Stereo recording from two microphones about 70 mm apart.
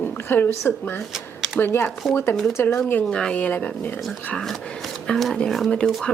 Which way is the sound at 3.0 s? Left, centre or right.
Centre.